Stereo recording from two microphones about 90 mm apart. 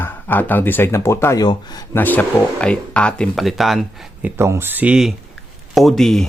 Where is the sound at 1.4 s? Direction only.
50° left (ahead or behind).